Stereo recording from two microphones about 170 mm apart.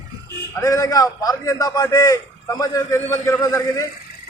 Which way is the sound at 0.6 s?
20° left (ahead or behind).